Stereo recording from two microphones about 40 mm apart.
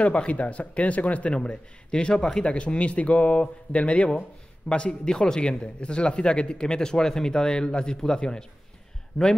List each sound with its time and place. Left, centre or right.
0.0 s speech: left
1.3 s speech: left
2.1 s a man's voice: centre
2.4 s a man's voice: left